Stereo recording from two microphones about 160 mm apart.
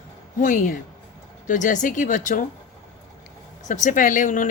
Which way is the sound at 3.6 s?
50° left (ahead or behind).